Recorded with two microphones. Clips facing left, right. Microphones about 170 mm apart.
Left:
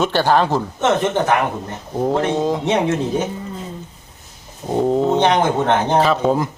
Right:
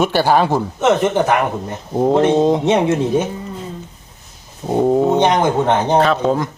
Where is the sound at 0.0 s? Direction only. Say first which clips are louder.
Right 2 dB; 10° right (ahead or behind).